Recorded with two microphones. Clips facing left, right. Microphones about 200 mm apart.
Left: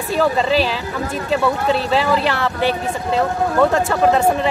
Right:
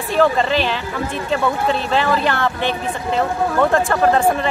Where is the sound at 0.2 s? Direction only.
5° left (ahead or behind).